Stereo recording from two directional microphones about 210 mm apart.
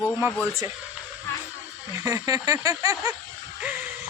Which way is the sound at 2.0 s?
15° right (ahead or behind).